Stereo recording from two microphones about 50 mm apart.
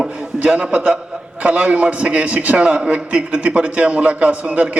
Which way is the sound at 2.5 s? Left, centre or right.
Right.